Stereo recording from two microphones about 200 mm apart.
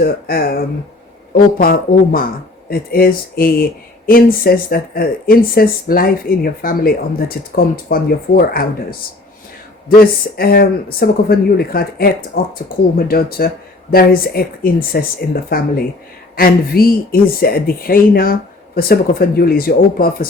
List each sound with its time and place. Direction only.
0.0 s speech: 50° left (ahead or behind)